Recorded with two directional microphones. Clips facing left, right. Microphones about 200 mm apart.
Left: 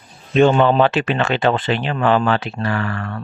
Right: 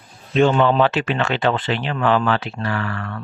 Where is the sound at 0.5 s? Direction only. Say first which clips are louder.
Left 2 dB; 20° left (ahead or behind).